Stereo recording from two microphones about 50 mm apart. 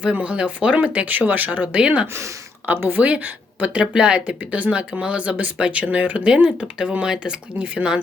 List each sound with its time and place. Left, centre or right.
0.0 s speech: right
0.8 s speech: right
4.4 s speech: right